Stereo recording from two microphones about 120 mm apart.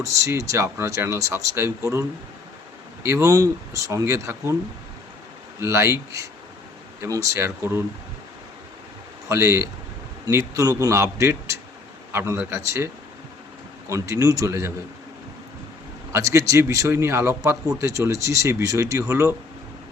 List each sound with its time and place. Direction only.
0.0 s speech: 25° right (ahead or behind)
5.5 s speech: 25° right (ahead or behind)
9.3 s speech: 25° right (ahead or behind)
16.1 s speech: 25° right (ahead or behind)